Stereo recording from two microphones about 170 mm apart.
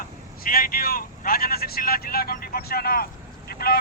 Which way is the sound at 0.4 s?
60° left (ahead or behind).